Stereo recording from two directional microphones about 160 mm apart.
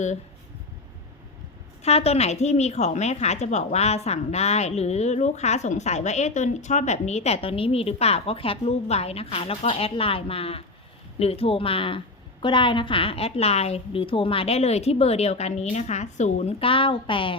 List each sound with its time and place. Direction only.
1.8 s a woman's voice: 40° left (ahead or behind)